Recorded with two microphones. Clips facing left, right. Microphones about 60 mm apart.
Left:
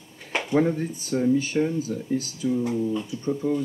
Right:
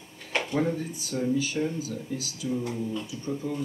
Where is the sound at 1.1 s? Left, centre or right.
Left.